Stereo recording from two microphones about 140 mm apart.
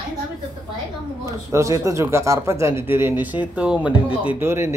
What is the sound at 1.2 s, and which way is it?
Speech, 20° right (ahead or behind).